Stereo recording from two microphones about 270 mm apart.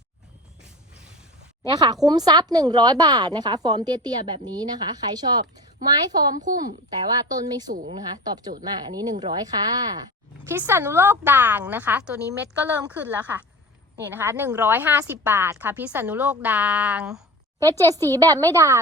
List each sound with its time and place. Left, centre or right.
1.7 s a woman's voice: centre
6.1 s a woman's voice: right
6.9 s a woman's voice: centre
7.7 s a woman's voice: right
7.9 s a woman's voice: centre